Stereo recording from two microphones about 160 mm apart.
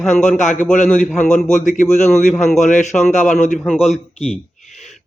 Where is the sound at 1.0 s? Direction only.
55° left (ahead or behind).